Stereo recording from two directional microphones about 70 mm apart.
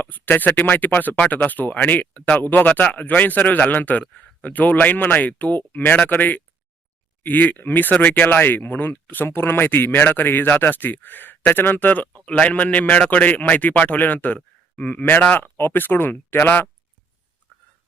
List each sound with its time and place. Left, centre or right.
0.0 s speech: left
15.4 s speech: left